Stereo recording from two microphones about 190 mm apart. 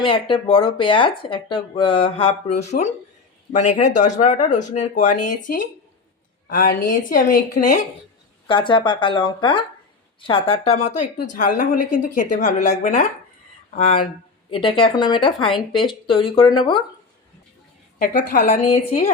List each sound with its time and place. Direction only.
0.0 s speech: 25° left (ahead or behind)
3.5 s speech: 40° left (ahead or behind)
6.5 s a woman's voice: 50° left (ahead or behind)
8.4 s speech: 25° left (ahead or behind)
18.0 s a woman's voice: 45° left (ahead or behind)
18.7 s speech: 35° left (ahead or behind)